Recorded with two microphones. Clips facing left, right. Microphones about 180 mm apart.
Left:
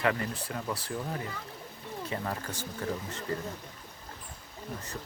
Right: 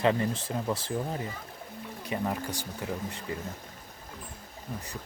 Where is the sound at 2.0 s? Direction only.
15° right (ahead or behind).